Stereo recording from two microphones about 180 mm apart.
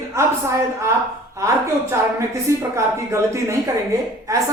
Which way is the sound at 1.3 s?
15° right (ahead or behind).